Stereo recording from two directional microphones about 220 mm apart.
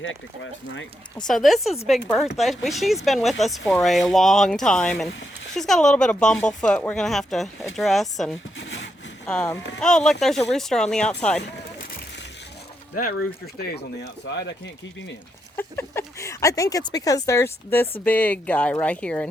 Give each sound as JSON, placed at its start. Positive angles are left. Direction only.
{"t": 1.3, "sound": "speech", "side_deg": 0}
{"t": 8.5, "sound": "sawing", "side_deg": 55}
{"t": 9.2, "sound": "speech", "side_deg": 5}
{"t": 13.6, "sound": "speech", "side_deg": 50}
{"t": 15.5, "sound": "speech", "side_deg": 10}